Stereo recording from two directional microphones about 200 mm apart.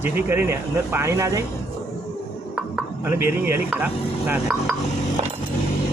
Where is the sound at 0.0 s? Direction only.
10° right (ahead or behind).